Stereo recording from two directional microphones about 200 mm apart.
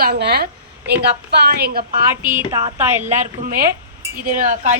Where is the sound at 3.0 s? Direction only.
35° right (ahead or behind).